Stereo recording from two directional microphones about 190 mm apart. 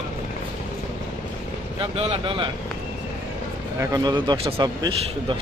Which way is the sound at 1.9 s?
30° right (ahead or behind).